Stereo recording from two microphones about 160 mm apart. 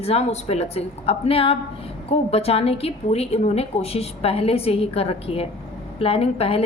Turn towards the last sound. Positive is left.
turn(degrees=35)  # may be behind; listen again after turning